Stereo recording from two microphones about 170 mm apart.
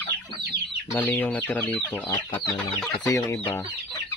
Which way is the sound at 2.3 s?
5° left (ahead or behind).